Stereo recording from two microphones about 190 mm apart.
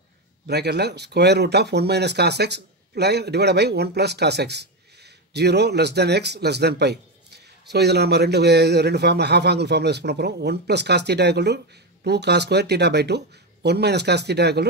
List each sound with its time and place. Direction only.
0.5 s a man's voice: 60° right (ahead or behind)